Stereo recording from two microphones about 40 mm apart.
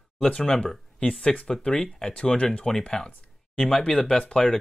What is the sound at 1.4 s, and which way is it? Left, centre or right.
Speech, left.